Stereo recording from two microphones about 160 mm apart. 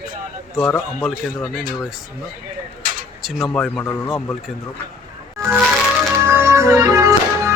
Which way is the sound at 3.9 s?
15° left (ahead or behind).